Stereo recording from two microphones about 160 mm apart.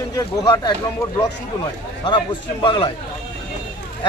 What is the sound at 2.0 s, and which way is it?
Speech, 30° left (ahead or behind).